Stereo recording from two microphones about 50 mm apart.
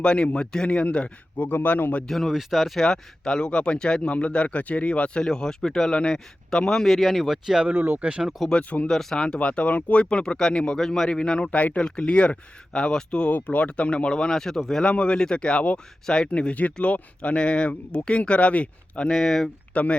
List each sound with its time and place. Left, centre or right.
0.0 s speech: centre
1.4 s speech: left
2.0 s speech: centre
2.8 s speech: centre
5.2 s speech: centre
7.9 s speech: right
8.5 s speech: left
8.9 s speech: centre
9.5 s speech: left
11.8 s speech: centre
13.3 s speech: left; by 14.6 s centre
14.8 s speech: centre
19.0 s speech: centre
19.7 s speech: left